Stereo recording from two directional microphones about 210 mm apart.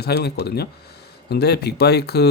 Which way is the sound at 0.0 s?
50° left (ahead or behind).